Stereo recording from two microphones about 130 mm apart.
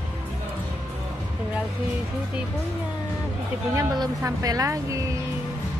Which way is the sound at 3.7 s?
25° right (ahead or behind).